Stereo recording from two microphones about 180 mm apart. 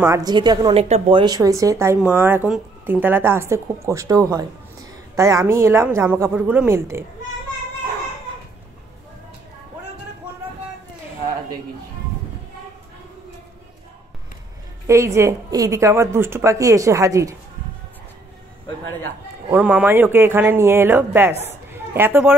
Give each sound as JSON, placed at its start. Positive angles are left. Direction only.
{"t": 0.0, "sound": "speech", "side_deg": -20}
{"t": 0.8, "sound": "a woman's voice", "side_deg": -35}
{"t": 14.9, "sound": "a woman's voice", "side_deg": -15}
{"t": 19.5, "sound": "a woman's voice", "side_deg": -10}